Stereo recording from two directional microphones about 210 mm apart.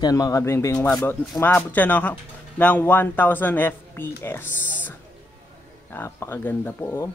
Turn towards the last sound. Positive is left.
turn(degrees=10)  # may be behind; listen again after turning